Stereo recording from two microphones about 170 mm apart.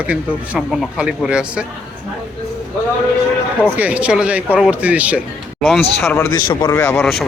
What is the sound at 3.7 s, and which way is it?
Speech, 10° right (ahead or behind).